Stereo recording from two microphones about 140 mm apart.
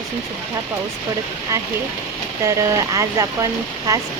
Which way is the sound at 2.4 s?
25° right (ahead or behind).